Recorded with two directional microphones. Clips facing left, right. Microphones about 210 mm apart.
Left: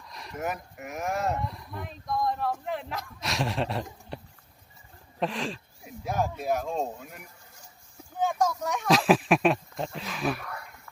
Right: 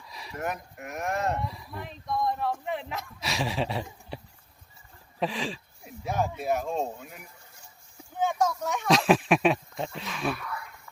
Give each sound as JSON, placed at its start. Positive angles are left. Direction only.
{"t": 0.0, "sound": "speech", "side_deg": 0}
{"t": 5.2, "sound": "speech", "side_deg": 0}
{"t": 10.3, "sound": "dog", "side_deg": 45}